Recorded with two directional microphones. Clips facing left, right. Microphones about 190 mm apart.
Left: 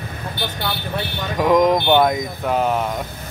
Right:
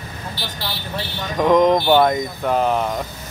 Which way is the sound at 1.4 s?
5° left (ahead or behind).